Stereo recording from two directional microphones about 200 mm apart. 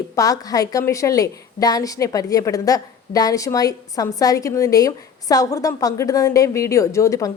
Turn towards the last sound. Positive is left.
turn(degrees=15)  # may be behind; listen again after turning